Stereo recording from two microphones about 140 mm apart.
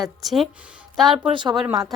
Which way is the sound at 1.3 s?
35° right (ahead or behind).